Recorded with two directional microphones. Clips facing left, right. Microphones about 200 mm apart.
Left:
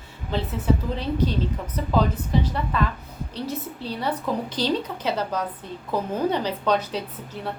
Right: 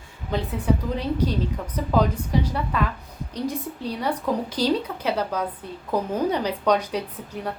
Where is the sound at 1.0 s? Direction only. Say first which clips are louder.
Even; 10° right (ahead or behind).